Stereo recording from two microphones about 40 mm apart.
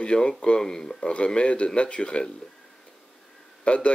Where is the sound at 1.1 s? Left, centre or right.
Left.